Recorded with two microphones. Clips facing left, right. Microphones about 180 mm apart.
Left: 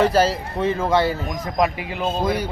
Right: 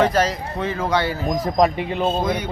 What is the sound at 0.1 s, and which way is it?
Speech, 30° left (ahead or behind).